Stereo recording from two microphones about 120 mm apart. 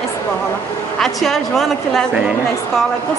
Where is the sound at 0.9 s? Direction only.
Centre (ahead or behind).